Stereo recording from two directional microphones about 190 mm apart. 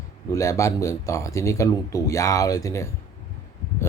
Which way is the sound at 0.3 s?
15° left (ahead or behind).